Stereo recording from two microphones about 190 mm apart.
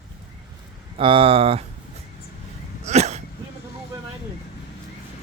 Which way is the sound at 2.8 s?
35° right (ahead or behind).